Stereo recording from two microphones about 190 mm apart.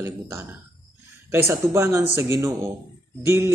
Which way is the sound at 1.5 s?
10° right (ahead or behind).